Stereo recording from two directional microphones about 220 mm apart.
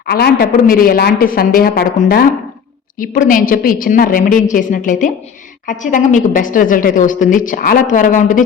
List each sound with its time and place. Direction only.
0.0 s a woman's voice: 45° left (ahead or behind)